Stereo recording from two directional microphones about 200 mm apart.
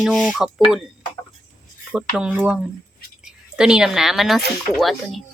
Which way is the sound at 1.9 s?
5° right (ahead or behind).